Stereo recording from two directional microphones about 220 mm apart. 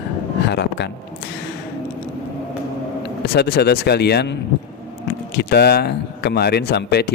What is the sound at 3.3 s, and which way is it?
Mantra, 45° left (ahead or behind).